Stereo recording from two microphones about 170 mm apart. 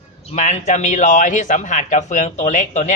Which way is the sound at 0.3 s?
45° left (ahead or behind).